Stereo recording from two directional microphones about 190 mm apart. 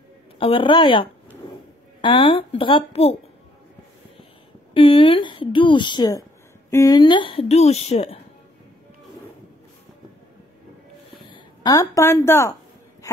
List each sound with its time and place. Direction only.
0.4 s a woman's voice: 25° left (ahead or behind)
4.7 s a woman's voice: 25° left (ahead or behind)
11.2 s speech: 25° left (ahead or behind)